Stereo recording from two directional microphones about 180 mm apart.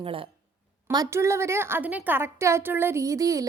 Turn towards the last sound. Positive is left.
turn(degrees=-20)  # may be behind; listen again after turning